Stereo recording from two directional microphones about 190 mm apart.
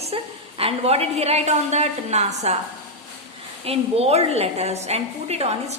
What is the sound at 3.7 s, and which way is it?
A woman's voice, 30° right (ahead or behind).